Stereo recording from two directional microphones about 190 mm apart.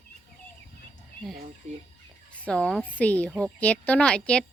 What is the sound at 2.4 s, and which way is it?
A woman's voice, 5° left (ahead or behind).